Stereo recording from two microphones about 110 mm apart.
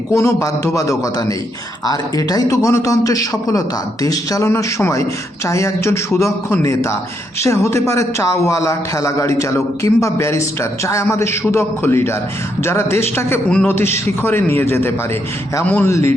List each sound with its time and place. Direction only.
0.1 s a man's voice: 25° left (ahead or behind)
15.9 s a man's voice: 25° left (ahead or behind)